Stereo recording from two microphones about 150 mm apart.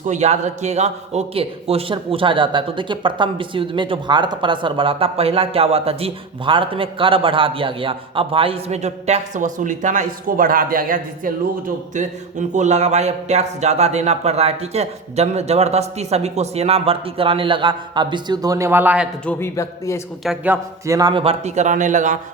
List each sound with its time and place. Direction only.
0.0 s a man's voice: 50° right (ahead or behind); by 11.3 s 65° right (ahead or behind)
11.9 s speech: 55° right (ahead or behind); by 19.0 s 10° right (ahead or behind)
19.2 s a man's voice: 10° left (ahead or behind)
19.5 s speech: 20° left (ahead or behind)
20.2 s speech: 5° right (ahead or behind)
20.8 s speech: 25° right (ahead or behind); by 22.2 s 55° right (ahead or behind)